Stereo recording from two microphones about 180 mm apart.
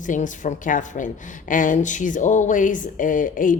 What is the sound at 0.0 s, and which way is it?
A woman's voice, 45° left (ahead or behind).